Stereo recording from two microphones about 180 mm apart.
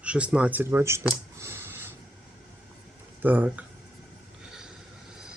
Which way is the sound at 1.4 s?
10° right (ahead or behind).